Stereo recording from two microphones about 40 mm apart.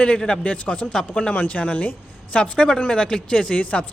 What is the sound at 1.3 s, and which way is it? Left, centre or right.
A man's voice, left.